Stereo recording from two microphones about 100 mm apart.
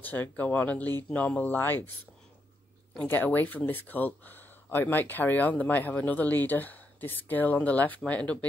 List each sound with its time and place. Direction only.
0.0 s speech: 20° left (ahead or behind)
3.1 s speech: 20° left (ahead or behind)